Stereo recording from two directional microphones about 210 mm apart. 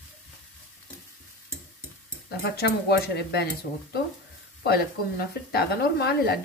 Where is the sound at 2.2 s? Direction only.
50° left (ahead or behind).